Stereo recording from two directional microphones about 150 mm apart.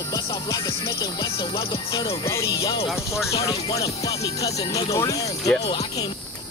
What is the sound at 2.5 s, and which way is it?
Speech, 35° left (ahead or behind).